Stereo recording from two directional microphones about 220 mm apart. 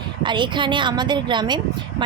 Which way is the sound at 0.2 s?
20° right (ahead or behind).